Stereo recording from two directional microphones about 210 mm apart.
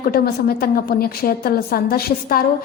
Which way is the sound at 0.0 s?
45° left (ahead or behind).